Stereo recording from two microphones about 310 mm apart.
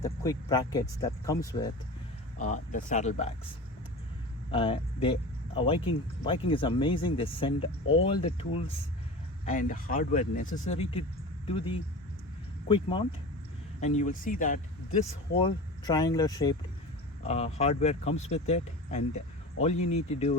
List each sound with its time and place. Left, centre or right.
0.0 s speech: centre
2.5 s speech: left
4.5 s speech: centre